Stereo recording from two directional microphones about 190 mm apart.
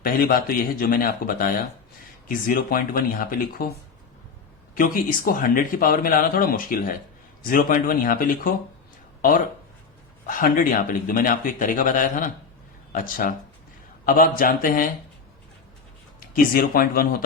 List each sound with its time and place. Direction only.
0.0 s speech: 50° left (ahead or behind)
4.7 s speech: 50° left (ahead or behind)
10.2 s speech: 45° left (ahead or behind)
16.2 s speech: 50° left (ahead or behind)